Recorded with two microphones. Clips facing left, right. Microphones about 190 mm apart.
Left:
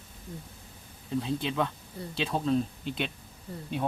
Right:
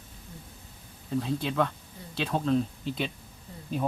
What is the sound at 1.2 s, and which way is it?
Speech, centre (ahead or behind).